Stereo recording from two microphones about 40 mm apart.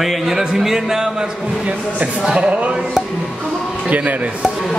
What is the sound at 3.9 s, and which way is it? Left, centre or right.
Speech, right.